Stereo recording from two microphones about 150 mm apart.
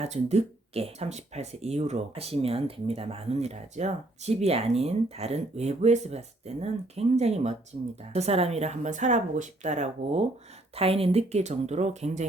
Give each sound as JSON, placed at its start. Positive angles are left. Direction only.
{"t": 0.0, "sound": "speech", "side_deg": -45}